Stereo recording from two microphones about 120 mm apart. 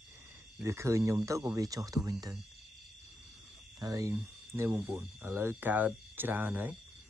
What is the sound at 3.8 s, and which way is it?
Speech, 30° right (ahead or behind).